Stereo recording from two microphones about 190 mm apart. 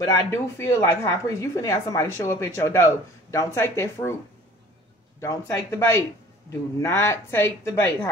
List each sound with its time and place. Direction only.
0.0 s a woman's voice: 15° left (ahead or behind)
5.2 s a woman's voice: 15° left (ahead or behind)